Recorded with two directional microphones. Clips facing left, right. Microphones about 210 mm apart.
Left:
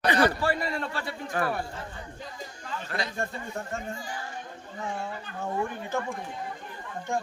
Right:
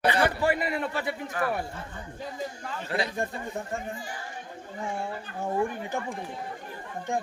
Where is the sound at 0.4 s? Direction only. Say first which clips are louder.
Right 2 dB; 15° right (ahead or behind).